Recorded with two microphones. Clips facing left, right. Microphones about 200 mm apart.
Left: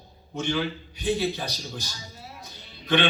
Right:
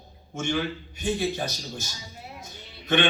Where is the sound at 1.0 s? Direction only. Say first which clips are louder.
Left 1 dB; 50° right (ahead or behind).